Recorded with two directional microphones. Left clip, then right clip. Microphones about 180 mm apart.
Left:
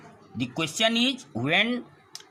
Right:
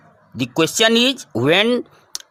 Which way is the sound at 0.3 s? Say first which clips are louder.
Right 11 dB; 60° right (ahead or behind).